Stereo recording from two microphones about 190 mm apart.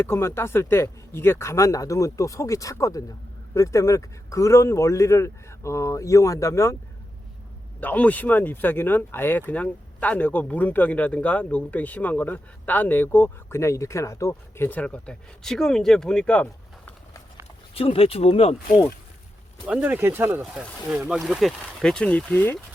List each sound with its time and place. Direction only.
0.0 s speech: 10° left (ahead or behind)
7.8 s speech: 10° left (ahead or behind)
17.7 s speech: 30° left (ahead or behind)
19.6 s speech: 10° right (ahead or behind); by 22.5 s 10° left (ahead or behind)